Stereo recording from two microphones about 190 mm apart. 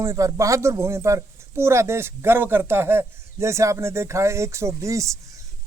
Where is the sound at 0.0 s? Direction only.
15° right (ahead or behind).